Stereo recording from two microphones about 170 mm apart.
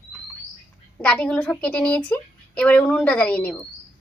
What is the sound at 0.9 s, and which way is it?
A woman's voice, 5° left (ahead or behind).